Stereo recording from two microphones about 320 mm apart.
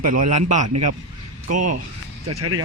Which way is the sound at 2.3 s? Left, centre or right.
Right.